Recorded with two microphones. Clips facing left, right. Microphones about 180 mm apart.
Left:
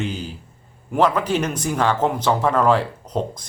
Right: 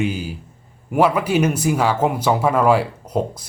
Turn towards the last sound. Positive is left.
turn(degrees=-10)  # may be behind; listen again after turning